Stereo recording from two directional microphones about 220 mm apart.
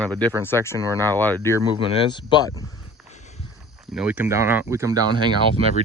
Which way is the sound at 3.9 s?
5° right (ahead or behind).